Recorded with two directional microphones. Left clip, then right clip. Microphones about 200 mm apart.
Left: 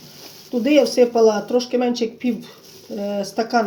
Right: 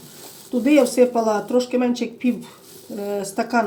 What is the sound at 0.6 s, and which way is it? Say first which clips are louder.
Speech: left 1 dB; 20° left (ahead or behind).